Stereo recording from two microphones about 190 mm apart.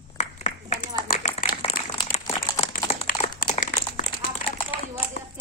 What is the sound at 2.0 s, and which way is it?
Crumpling, 35° left (ahead or behind).